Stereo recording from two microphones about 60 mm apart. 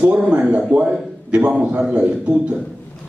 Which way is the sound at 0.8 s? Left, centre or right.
Centre.